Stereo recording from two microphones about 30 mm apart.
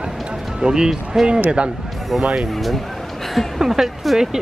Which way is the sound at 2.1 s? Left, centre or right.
Centre.